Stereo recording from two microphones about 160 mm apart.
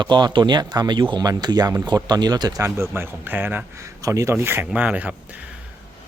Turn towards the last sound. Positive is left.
turn(degrees=-10)  # may be behind; listen again after turning